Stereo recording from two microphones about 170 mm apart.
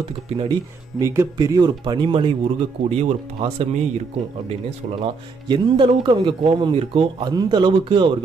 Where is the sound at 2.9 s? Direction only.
40° right (ahead or behind).